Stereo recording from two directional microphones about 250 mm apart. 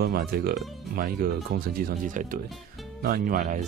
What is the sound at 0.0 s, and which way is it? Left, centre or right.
Speech, right.